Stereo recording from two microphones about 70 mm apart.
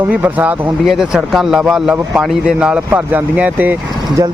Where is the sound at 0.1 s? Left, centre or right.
Right.